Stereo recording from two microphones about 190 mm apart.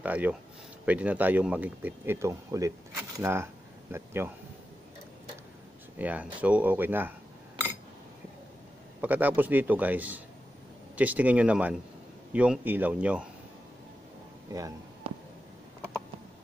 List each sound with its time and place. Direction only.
0.0 s speech: 10° right (ahead or behind)
5.9 s speech: 10° right (ahead or behind)
9.0 s speech: 10° right (ahead or behind)